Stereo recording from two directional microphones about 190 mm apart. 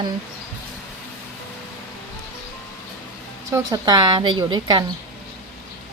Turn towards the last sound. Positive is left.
turn(degrees=-25)  # may be behind; listen again after turning